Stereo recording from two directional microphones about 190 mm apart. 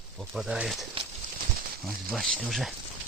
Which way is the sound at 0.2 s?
Centre (ahead or behind).